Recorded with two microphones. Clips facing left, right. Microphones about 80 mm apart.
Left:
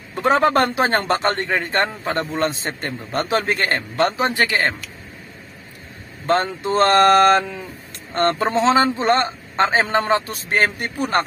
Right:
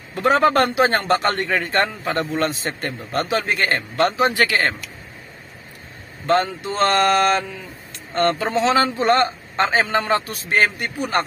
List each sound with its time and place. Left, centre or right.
0.1 s a man's voice: left
3.3 s a man's voice: left
4.4 s a man's voice: left
6.2 s a man's voice: left
8.5 s a man's voice: left